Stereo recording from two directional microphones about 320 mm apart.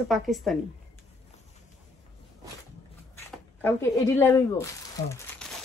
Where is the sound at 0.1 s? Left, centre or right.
Centre.